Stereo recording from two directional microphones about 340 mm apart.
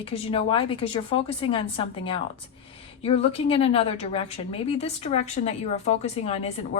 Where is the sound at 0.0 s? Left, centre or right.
Centre.